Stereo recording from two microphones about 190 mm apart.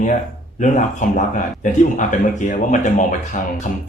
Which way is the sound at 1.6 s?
40° left (ahead or behind).